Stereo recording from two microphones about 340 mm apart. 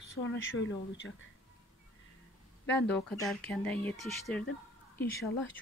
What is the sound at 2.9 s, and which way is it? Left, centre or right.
Speech, centre.